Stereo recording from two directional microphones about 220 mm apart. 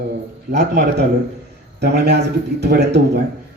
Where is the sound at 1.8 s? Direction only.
50° right (ahead or behind).